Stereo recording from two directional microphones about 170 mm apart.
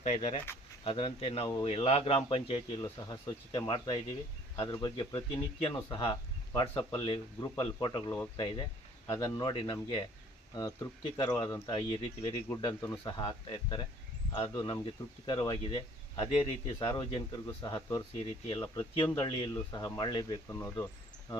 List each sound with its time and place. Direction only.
0.0 s speech: 40° left (ahead or behind); by 18.0 s 20° left (ahead or behind)
18.2 s speech: 30° left (ahead or behind)
18.6 s speech: 15° left (ahead or behind)